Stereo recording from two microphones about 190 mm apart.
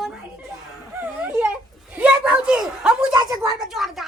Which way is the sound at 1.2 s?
10° right (ahead or behind).